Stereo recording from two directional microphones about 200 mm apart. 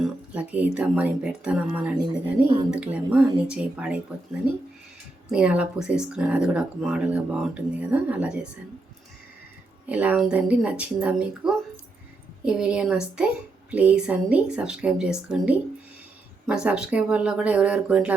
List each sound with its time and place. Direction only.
0.0 s speech: 5° right (ahead or behind)
5.3 s speech: 5° right (ahead or behind)
9.9 s speech: 5° right (ahead or behind)